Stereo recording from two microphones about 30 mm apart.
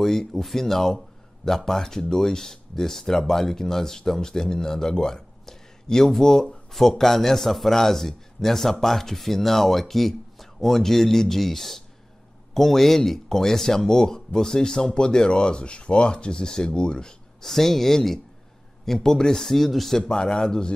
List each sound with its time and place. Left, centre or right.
0.0 s speech: centre
17.4 s speech: centre
20.0 s speech: left